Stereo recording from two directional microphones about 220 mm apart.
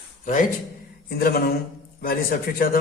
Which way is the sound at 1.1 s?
45° left (ahead or behind).